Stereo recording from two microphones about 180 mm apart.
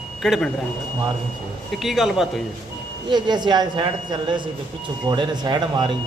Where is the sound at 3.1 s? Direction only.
25° right (ahead or behind).